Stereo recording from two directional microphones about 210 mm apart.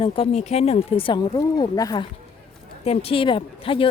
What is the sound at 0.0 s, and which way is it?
A woman's voice, 30° left (ahead or behind).